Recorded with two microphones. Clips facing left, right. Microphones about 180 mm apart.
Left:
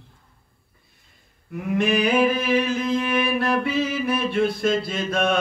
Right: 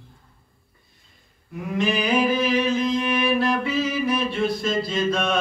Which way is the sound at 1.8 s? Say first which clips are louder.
Left 2 dB; 60° left (ahead or behind).